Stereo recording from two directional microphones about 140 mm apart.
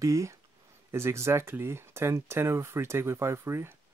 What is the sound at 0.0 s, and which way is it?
Speech, 20° right (ahead or behind).